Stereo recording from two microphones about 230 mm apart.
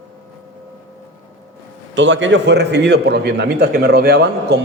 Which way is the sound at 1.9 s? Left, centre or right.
Right.